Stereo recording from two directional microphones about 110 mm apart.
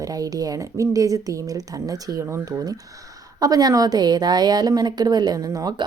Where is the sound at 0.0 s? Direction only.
35° right (ahead or behind).